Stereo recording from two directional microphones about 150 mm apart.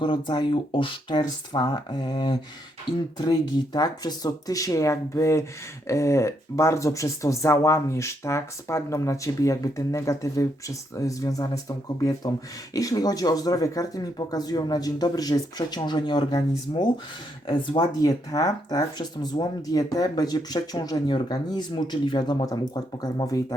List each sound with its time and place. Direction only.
0.0 s speech: 30° left (ahead or behind)
12.7 s speech: 25° left (ahead or behind)